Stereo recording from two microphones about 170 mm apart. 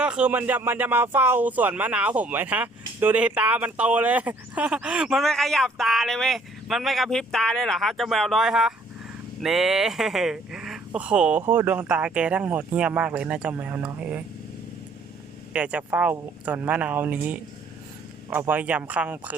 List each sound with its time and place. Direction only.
0.0 s speech: 5° right (ahead or behind)
15.5 s speech: 10° right (ahead or behind)